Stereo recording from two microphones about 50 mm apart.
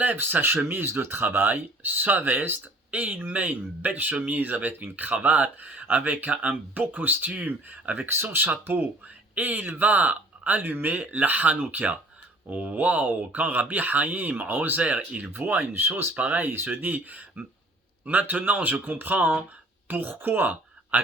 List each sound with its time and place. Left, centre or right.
0.0 s speech: right
8.0 s speech: right
10.6 s speech: right
14.8 s speech: right
15.3 s speech: right
16.1 s speech: right